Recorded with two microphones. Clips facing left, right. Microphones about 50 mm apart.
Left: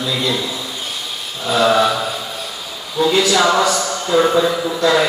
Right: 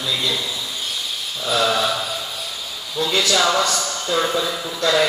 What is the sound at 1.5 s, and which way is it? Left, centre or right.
Mantra, left.